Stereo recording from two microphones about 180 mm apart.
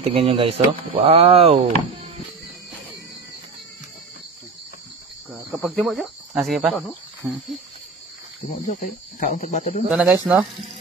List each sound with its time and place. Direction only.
0.0 s speech: 30° right (ahead or behind)
5.6 s speech: centre (ahead or behind)
9.2 s speech: 45° left (ahead or behind)
9.8 s speech: 5° right (ahead or behind)